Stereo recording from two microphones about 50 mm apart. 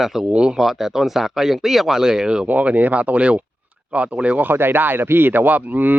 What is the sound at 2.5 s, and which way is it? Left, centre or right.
Speech, right.